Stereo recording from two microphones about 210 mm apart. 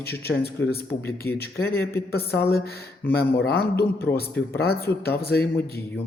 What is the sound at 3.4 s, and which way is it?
A man's voice, 50° left (ahead or behind).